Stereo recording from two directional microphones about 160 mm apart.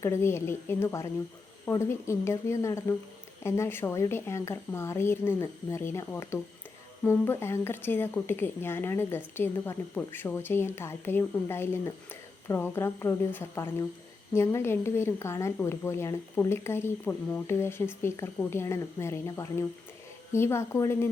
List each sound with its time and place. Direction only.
0.0 s a woman's voice: 15° left (ahead or behind)